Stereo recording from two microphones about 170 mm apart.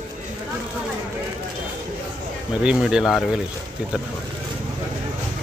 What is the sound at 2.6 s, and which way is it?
Speech, 5° right (ahead or behind).